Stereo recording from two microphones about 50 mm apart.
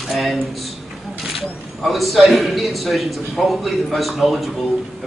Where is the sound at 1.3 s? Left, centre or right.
Centre.